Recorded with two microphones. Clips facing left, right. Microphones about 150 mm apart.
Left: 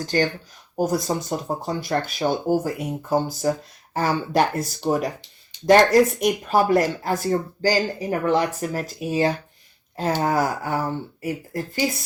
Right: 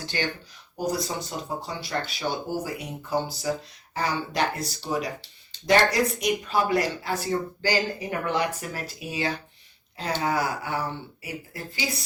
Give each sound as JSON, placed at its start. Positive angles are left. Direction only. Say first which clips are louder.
{"t": 0.0, "sound": "speech", "louder": "left 8 dB", "side_deg": 45}